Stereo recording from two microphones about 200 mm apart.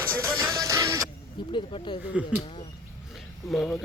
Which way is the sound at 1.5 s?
25° left (ahead or behind).